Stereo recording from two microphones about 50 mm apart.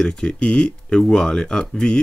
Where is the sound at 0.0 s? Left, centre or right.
Centre.